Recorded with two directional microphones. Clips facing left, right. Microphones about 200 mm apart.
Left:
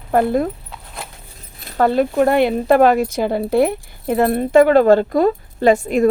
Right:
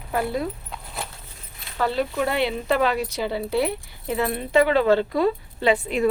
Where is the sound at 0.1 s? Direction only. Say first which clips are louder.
Left 9 dB; 50° left (ahead or behind).